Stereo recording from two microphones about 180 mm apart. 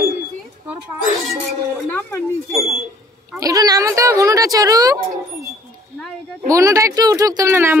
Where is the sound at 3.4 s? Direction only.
20° right (ahead or behind).